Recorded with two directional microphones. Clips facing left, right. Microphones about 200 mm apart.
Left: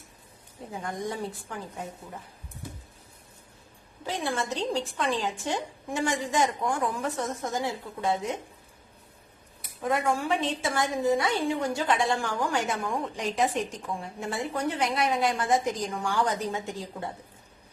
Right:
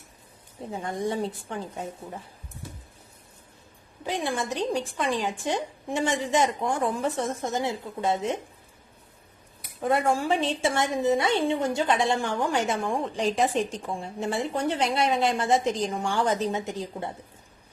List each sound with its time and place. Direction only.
0.7 s a woman's voice: 25° right (ahead or behind)
4.0 s a woman's voice: 15° right (ahead or behind)
9.9 s a woman's voice: 30° right (ahead or behind)